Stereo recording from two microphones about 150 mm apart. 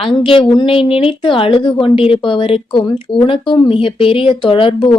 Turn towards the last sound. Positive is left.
turn(degrees=35)  # may be behind; listen again after turning